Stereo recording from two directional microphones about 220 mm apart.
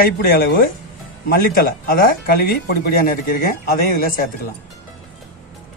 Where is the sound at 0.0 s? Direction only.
45° left (ahead or behind).